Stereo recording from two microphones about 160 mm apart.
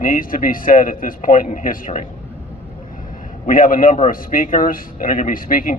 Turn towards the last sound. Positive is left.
turn(degrees=60)  # may be behind; listen again after turning